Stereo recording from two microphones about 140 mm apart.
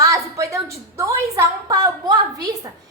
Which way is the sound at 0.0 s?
25° right (ahead or behind).